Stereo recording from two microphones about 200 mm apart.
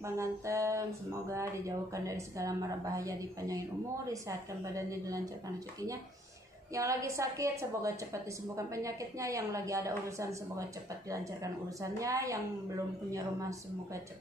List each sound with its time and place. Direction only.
0.0 s a woman's voice: 15° right (ahead or behind)
6.7 s a woman's voice: 15° right (ahead or behind)
12.0 s a woman's voice: 15° right (ahead or behind)